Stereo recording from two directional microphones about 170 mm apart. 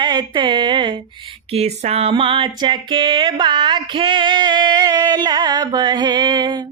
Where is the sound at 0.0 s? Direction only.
25° right (ahead or behind).